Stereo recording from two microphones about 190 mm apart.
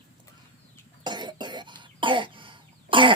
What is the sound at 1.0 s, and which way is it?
Cough, 25° right (ahead or behind).